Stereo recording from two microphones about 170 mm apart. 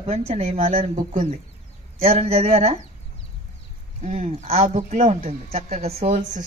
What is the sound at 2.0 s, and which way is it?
Speech, 35° right (ahead or behind).